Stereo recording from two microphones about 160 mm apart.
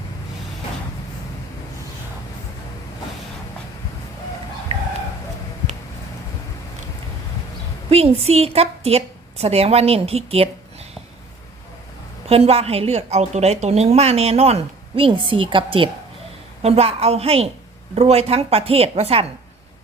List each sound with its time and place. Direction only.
7.9 s a woman's voice: 40° right (ahead or behind)
12.3 s a woman's voice: 40° right (ahead or behind)